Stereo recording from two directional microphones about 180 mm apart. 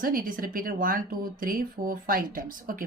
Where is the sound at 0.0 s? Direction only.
50° right (ahead or behind).